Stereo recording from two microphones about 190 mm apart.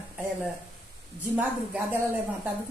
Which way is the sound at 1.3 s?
10° right (ahead or behind).